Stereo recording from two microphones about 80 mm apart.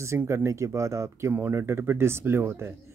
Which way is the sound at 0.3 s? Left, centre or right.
Right.